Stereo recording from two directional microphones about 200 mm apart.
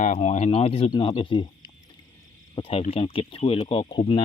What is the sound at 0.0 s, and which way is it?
Speech, 35° left (ahead or behind).